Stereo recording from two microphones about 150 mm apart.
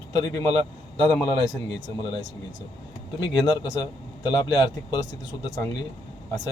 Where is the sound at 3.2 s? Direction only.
30° left (ahead or behind).